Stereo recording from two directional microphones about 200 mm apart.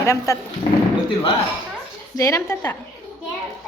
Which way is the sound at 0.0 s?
15° left (ahead or behind).